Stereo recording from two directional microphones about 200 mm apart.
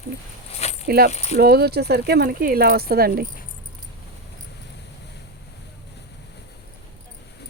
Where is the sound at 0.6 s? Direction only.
30° left (ahead or behind).